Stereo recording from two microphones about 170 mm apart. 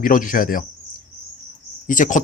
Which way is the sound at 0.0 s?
50° left (ahead or behind).